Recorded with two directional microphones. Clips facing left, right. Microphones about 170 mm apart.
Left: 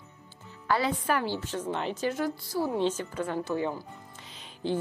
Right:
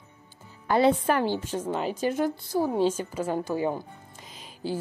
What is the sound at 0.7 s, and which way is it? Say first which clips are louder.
Speech: right 6 dB; 25° right (ahead or behind).